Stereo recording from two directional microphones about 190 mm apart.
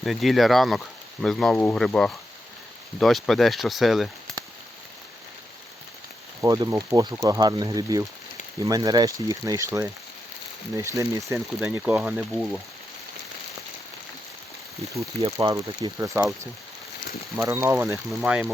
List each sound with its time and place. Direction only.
0.0 s speech: centre (ahead or behind)
6.4 s speech: 20° right (ahead or behind); by 12.5 s 5° right (ahead or behind)
15.2 s speech: 25° right (ahead or behind); by 18.5 s 5° right (ahead or behind)